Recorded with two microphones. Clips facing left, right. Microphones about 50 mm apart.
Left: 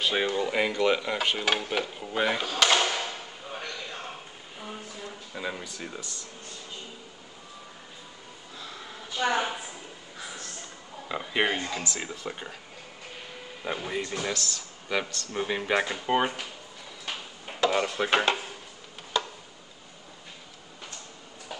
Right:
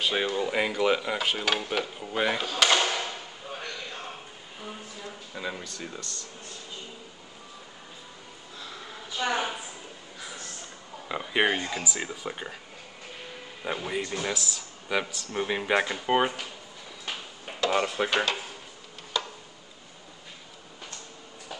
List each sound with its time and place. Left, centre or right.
0.0 s speech: centre
0.4 s cutlery: centre
2.6 s a sound: centre
5.3 s speech: centre
9.2 s speech: centre
11.1 s speech: centre
13.7 s cutlery: centre
14.1 s speech: centre
17.6 s cutlery: centre
18.1 s speech: left